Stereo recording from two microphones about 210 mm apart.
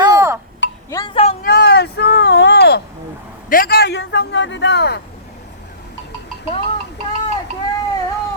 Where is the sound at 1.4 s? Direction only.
50° left (ahead or behind).